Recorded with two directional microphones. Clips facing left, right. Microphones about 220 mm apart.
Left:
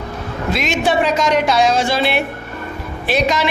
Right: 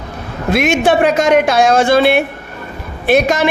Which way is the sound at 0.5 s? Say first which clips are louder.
Right 6 dB; 55° right (ahead or behind).